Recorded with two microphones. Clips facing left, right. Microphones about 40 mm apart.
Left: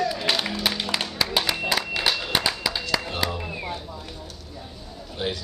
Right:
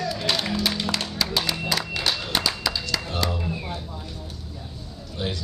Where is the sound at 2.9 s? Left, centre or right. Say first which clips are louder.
Left 1 dB; centre.